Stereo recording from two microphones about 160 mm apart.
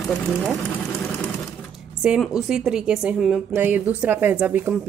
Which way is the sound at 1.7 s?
5° right (ahead or behind).